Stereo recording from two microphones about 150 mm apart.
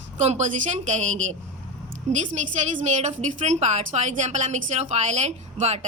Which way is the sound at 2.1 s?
55° right (ahead or behind).